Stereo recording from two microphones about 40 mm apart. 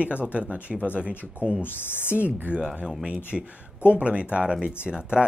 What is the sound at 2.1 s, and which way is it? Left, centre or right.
Speech, right.